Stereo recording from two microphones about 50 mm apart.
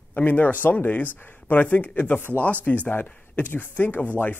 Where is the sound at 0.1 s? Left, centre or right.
Left.